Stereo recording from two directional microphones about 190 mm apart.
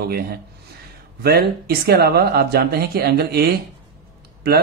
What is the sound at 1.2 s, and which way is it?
Speech, 55° right (ahead or behind).